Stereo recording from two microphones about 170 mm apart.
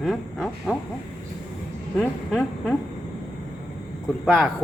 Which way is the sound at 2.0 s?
5° left (ahead or behind).